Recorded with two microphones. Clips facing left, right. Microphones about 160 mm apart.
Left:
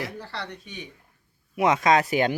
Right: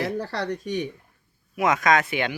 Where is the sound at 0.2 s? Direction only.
40° right (ahead or behind).